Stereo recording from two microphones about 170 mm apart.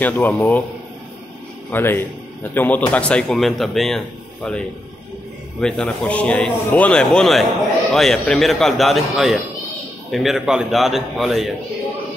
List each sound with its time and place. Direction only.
0.0 s a man's voice: 10° left (ahead or behind)
1.7 s a man's voice: 10° left (ahead or behind)
5.6 s a man's voice: 5° left (ahead or behind)